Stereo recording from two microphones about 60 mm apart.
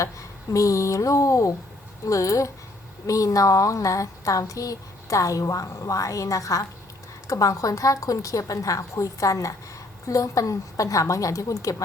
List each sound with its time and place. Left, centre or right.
0.0 s a woman's voice: left